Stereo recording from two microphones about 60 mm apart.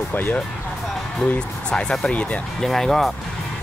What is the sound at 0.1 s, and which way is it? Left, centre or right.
Speech, left.